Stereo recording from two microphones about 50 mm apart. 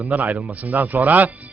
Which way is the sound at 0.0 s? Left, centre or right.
Right.